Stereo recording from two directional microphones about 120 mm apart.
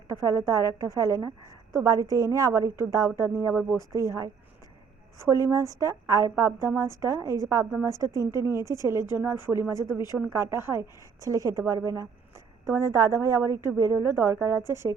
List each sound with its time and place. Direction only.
0.1 s a woman's voice: 25° right (ahead or behind)